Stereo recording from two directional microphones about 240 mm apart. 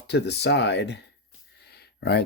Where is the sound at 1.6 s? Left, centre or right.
Left.